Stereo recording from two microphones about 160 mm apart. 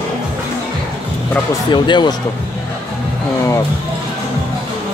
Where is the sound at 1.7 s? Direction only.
30° left (ahead or behind).